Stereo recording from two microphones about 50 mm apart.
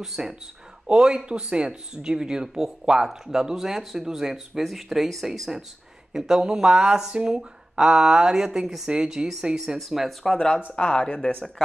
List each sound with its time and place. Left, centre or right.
0.0 s speech: centre
9.8 s speech: centre
10.2 s speech: centre